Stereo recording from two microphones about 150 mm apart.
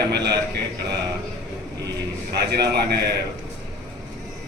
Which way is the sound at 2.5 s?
90° right.